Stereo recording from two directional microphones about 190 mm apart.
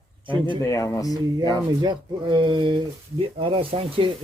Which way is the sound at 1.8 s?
25° right (ahead or behind).